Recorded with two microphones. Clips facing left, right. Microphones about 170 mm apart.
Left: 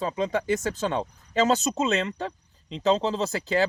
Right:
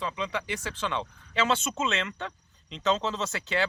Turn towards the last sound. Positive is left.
turn(degrees=35)  # may be behind; listen again after turning